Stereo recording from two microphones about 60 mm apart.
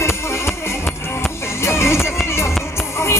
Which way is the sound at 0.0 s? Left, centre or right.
Left.